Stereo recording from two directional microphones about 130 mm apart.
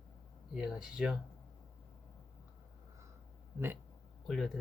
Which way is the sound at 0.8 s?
5° right (ahead or behind).